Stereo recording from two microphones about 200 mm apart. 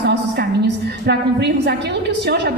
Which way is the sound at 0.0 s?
55° right (ahead or behind).